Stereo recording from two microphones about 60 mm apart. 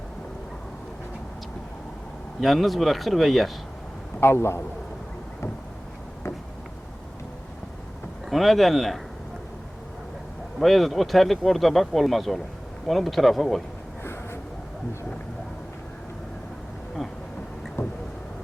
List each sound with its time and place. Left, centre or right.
2.4 s speech: centre
4.2 s a man's voice: left
8.3 s speech: centre
10.6 s speech: centre
17.8 s vehicle: left